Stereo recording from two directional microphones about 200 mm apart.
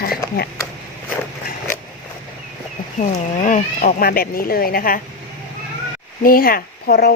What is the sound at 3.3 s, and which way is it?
Speech, 40° left (ahead or behind).